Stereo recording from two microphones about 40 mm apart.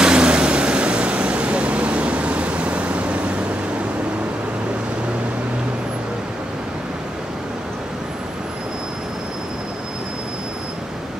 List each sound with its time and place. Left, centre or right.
0.0 s vehicle: right